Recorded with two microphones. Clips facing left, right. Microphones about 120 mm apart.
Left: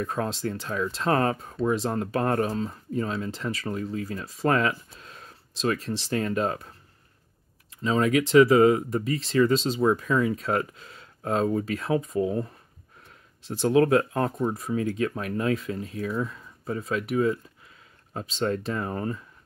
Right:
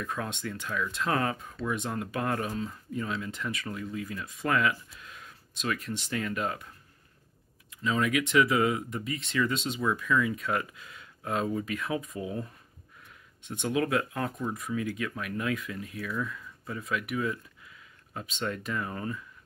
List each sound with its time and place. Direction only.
0.0 s speech: 35° left (ahead or behind)
7.8 s speech: 35° left (ahead or behind)